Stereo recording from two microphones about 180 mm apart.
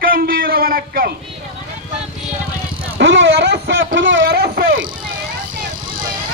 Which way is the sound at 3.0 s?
90° right.